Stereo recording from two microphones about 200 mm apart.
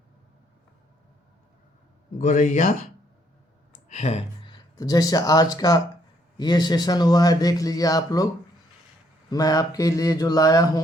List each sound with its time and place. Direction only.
2.1 s speech: 40° left (ahead or behind)
3.8 s speech: 35° left (ahead or behind); by 8.3 s 20° left (ahead or behind)
9.3 s speech: 20° left (ahead or behind)